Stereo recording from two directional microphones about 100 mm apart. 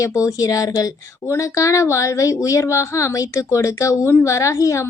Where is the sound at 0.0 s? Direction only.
30° left (ahead or behind).